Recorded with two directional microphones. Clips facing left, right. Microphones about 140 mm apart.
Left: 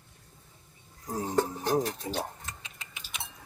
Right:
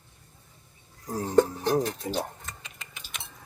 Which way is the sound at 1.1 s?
20° left (ahead or behind).